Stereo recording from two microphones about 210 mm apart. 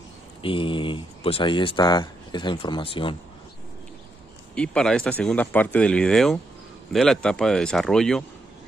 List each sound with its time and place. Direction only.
0.4 s speech: 25° left (ahead or behind)
4.6 s speech: 5° left (ahead or behind)